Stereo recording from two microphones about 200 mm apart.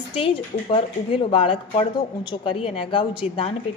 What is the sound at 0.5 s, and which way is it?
Speech, 40° left (ahead or behind).